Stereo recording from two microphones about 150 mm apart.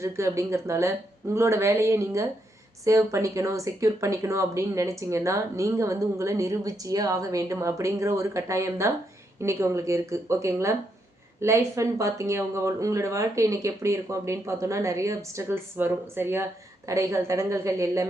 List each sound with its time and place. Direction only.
0.0 s speech: 20° right (ahead or behind)